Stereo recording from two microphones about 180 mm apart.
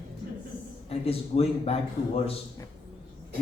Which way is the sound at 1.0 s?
35° left (ahead or behind).